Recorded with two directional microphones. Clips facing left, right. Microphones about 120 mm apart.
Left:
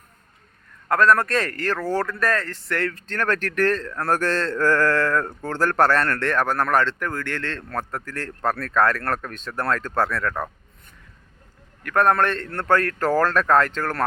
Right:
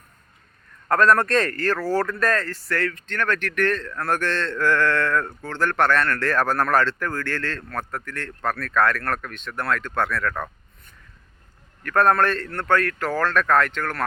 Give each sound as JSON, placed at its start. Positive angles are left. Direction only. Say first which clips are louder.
{"t": 0.9, "sound": "a man's voice", "louder": "even", "side_deg": 5}
{"t": 2.9, "sound": "a man's voice", "louder": "left 1 dB", "side_deg": 35}
{"t": 6.2, "sound": "speech", "louder": "even", "side_deg": 15}
{"t": 11.8, "sound": "speech", "louder": "even", "side_deg": 15}